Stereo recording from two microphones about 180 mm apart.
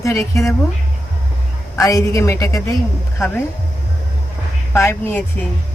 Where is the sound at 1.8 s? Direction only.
20° left (ahead or behind).